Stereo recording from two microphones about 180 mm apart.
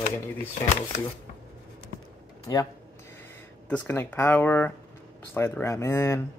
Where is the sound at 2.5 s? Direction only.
15° left (ahead or behind).